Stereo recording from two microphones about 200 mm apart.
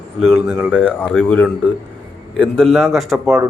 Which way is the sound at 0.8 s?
10° left (ahead or behind).